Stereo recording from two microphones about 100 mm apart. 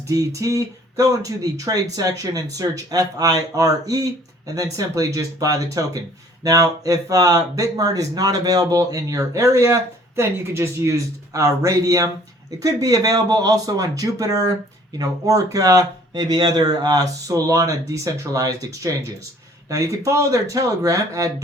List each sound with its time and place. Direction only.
0.1 s speech: 35° right (ahead or behind)